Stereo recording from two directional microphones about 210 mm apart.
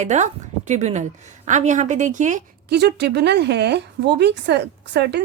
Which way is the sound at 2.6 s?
55° right (ahead or behind).